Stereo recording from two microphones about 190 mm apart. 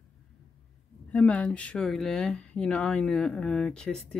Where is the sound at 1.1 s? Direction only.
5° left (ahead or behind).